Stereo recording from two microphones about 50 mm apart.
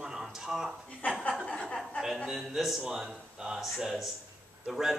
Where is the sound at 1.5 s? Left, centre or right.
Left.